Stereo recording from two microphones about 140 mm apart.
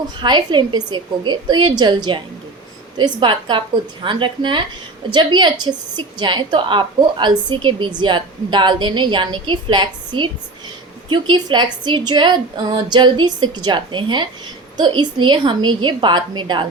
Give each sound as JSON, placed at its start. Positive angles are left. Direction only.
{"t": 0.2, "sound": "a woman's voice", "side_deg": -35}